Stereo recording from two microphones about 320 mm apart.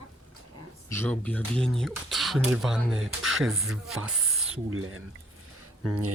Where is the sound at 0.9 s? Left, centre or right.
Centre.